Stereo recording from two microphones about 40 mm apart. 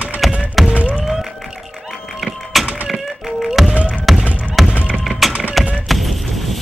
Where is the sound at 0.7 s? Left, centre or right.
Right.